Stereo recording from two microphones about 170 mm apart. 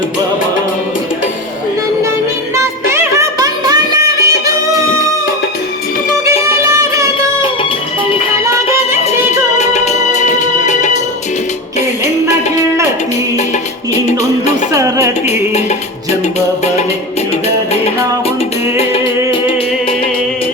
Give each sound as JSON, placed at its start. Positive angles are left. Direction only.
{"t": 2.6, "sound": "music", "side_deg": -15}
{"t": 6.2, "sound": "music", "side_deg": -20}
{"t": 9.6, "sound": "music", "side_deg": 45}
{"t": 12.5, "sound": "music", "side_deg": -15}
{"t": 14.7, "sound": "music", "side_deg": -20}
{"t": 18.8, "sound": "music", "side_deg": 30}